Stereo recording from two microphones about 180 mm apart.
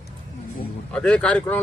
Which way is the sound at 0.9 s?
5° left (ahead or behind).